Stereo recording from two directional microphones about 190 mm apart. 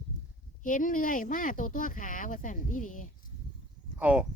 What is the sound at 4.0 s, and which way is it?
Speech, 5° right (ahead or behind).